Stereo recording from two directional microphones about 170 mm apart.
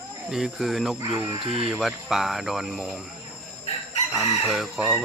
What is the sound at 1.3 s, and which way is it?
Speech, 30° right (ahead or behind).